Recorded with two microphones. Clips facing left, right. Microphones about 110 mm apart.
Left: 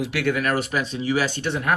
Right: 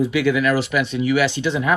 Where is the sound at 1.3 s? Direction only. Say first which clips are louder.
Right 4 dB; 50° left (ahead or behind).